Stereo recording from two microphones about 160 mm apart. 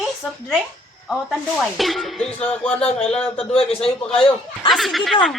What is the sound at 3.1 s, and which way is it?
Music, 5° left (ahead or behind).